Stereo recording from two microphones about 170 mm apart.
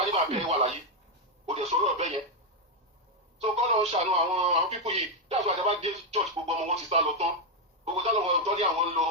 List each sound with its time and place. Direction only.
0.3 s radio: 40° right (ahead or behind)
1.5 s a sound: 40° right (ahead or behind)
3.4 s a man's voice: 40° right (ahead or behind)